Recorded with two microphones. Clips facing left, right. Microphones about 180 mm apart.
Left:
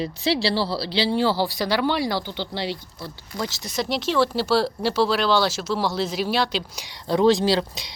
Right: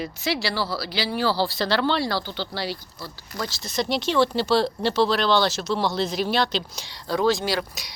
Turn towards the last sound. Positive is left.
turn(degrees=25)  # may be behind; listen again after turning